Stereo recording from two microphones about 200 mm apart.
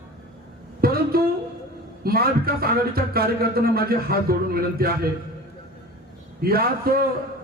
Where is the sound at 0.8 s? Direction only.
50° right (ahead or behind).